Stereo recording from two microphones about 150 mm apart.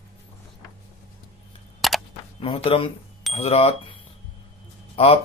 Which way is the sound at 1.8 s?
Centre (ahead or behind).